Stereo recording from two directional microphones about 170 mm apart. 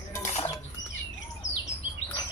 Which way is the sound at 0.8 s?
90° left.